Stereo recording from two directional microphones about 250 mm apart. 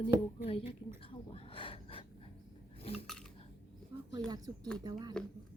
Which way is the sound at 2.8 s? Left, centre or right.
Left.